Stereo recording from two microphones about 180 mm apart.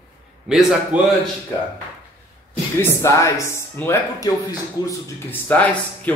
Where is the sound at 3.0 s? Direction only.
20° left (ahead or behind).